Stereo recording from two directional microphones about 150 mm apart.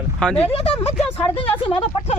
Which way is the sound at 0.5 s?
40° left (ahead or behind).